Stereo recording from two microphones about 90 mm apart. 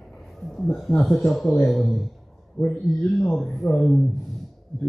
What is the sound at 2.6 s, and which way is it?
Speech, 25° left (ahead or behind).